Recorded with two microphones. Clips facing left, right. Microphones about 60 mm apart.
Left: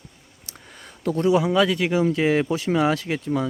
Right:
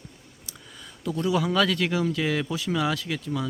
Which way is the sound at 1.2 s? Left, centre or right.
Left.